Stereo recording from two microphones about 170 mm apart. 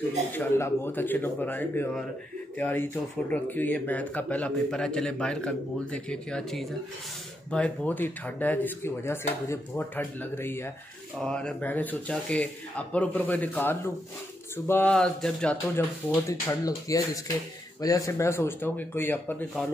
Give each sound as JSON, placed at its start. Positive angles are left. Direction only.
{"t": 0.3, "sound": "speech", "side_deg": 15}
{"t": 15.7, "sound": "speech", "side_deg": 15}